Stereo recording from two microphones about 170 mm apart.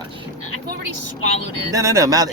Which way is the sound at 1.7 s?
20° right (ahead or behind).